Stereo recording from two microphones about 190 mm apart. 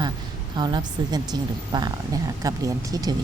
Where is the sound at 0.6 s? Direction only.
20° right (ahead or behind).